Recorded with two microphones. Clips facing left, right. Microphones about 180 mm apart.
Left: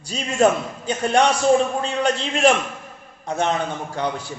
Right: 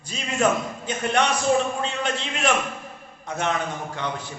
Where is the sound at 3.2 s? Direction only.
35° left (ahead or behind).